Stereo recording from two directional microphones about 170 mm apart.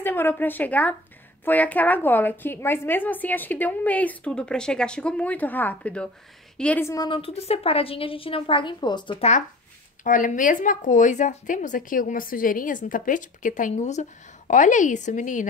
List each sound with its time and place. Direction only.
0.0 s a woman's voice: 10° left (ahead or behind)
7.1 s a woman's voice: 35° left (ahead or behind)
10.0 s speech: 50° left (ahead or behind)